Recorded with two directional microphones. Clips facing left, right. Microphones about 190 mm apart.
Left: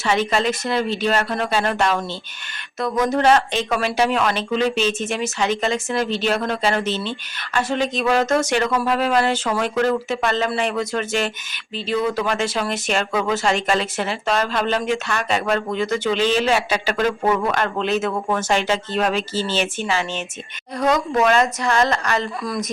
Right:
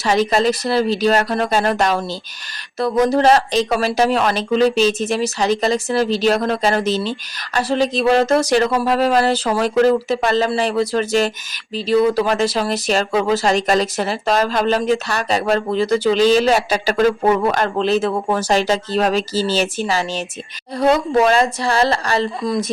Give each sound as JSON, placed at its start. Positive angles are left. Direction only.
{"t": 0.0, "sound": "speech", "side_deg": -40}